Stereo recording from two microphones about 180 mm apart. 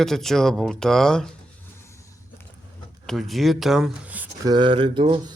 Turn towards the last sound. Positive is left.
turn(degrees=-25)  # may be behind; listen again after turning